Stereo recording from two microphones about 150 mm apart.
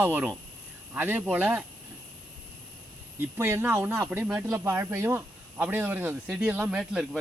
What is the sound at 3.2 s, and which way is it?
Speech, 15° right (ahead or behind).